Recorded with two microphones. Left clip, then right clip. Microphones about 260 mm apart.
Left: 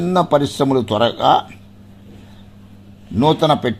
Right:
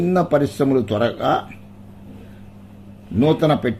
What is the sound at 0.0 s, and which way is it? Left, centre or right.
A man's voice, centre.